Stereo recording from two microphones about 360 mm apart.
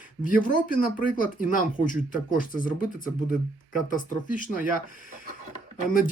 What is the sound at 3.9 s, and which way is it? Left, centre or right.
Speech, left.